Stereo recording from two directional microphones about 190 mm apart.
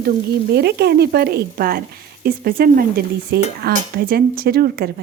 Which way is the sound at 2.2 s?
50° right (ahead or behind).